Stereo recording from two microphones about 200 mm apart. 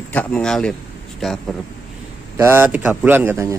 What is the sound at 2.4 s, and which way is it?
Speech, 10° right (ahead or behind).